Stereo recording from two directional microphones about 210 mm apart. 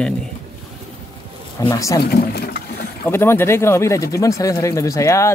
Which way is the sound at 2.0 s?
45° left (ahead or behind).